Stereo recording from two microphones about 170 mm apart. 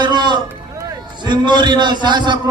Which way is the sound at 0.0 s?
25° right (ahead or behind).